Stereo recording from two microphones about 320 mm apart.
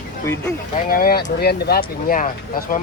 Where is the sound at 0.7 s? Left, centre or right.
Left.